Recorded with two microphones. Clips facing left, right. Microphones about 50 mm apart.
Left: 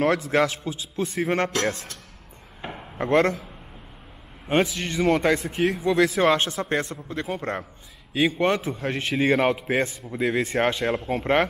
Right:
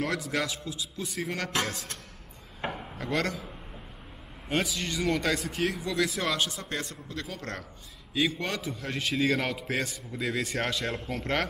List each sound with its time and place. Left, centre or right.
0.0 s speech: left
3.0 s speech: left
4.5 s a man's voice: left